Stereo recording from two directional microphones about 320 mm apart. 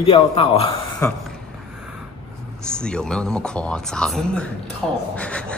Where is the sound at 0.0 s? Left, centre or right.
Centre.